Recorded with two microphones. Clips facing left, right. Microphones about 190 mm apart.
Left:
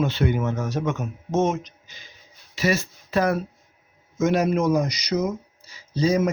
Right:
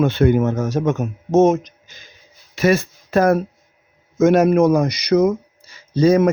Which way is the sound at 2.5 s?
55° right (ahead or behind).